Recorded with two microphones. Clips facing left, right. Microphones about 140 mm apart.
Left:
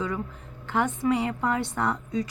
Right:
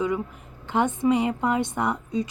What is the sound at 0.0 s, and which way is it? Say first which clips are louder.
Speech: right 4 dB; 15° right (ahead or behind).